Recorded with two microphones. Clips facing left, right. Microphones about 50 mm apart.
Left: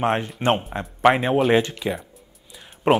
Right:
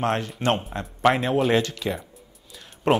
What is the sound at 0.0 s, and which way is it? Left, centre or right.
Speech, centre.